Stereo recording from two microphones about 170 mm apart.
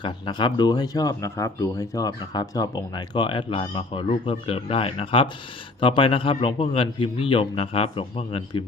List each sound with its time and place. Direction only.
0.0 s a man's voice: 25° left (ahead or behind)